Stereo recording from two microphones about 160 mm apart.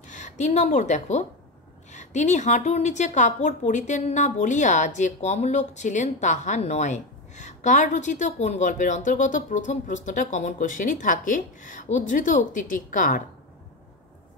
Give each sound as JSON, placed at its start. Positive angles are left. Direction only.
{"t": 0.0, "sound": "a woman's voice", "side_deg": 50}